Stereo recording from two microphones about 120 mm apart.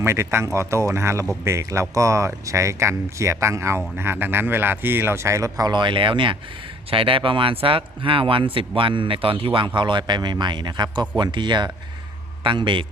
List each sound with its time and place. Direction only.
0.0 s a man's voice: 20° right (ahead or behind); by 12.8 s 40° right (ahead or behind)